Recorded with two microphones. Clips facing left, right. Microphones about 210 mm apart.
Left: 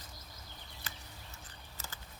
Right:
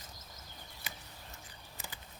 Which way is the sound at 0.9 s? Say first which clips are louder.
Right 1 dB; 10° right (ahead or behind).